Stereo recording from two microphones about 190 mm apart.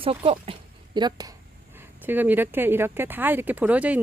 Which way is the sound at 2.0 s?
10° right (ahead or behind).